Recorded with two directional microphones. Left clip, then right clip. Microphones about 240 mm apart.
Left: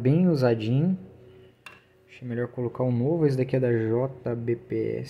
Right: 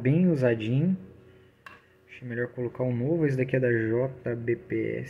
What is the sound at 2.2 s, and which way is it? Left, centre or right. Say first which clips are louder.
Speech: left 1 dB; centre.